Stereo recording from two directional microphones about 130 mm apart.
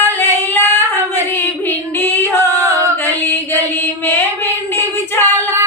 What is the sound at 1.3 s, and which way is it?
Female singing, 15° left (ahead or behind).